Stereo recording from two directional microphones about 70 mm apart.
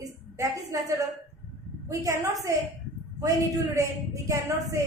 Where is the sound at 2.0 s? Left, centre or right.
Right.